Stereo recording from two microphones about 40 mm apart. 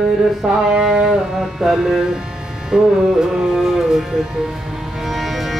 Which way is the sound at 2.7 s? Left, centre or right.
Centre.